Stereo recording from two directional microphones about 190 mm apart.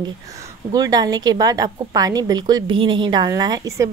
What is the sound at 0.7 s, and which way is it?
A woman's voice, 20° right (ahead or behind).